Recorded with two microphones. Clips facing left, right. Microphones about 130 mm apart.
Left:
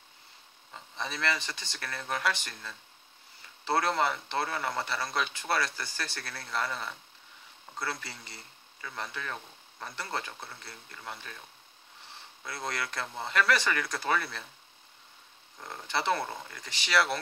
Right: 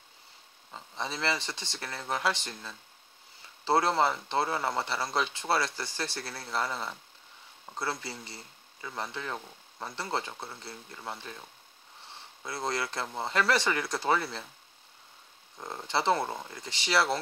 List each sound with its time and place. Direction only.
0.7 s a man's voice: 25° right (ahead or behind)
12.4 s a man's voice: 25° right (ahead or behind)
15.6 s a man's voice: 25° right (ahead or behind)